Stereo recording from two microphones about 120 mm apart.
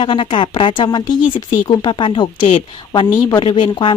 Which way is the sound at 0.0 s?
45° left (ahead or behind).